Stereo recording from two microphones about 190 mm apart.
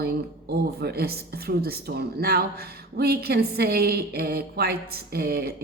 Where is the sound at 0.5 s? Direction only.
55° right (ahead or behind).